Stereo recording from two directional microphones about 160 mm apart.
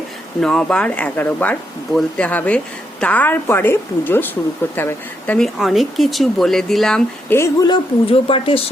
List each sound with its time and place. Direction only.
0.3 s a woman's voice: 5° left (ahead or behind)
5.5 s speech: centre (ahead or behind)
7.3 s a woman's voice: 20° left (ahead or behind)
7.7 s speech: 35° left (ahead or behind)